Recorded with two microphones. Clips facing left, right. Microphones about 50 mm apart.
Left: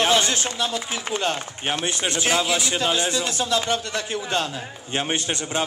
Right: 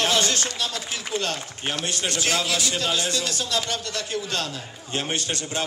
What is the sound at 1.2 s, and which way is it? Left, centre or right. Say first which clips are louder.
A man's voice: left 3 dB; left.